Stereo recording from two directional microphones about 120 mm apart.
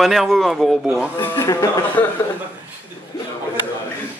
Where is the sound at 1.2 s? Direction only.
20° left (ahead or behind).